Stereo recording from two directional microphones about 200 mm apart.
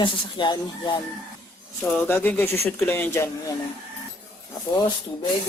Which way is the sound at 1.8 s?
5° left (ahead or behind).